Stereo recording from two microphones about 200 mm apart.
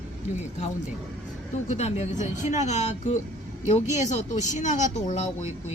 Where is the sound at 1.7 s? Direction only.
30° left (ahead or behind).